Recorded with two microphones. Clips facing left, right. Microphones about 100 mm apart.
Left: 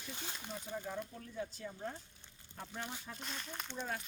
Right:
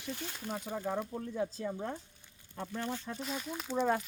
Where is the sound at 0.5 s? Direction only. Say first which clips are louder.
Right 7 dB; 60° right (ahead or behind).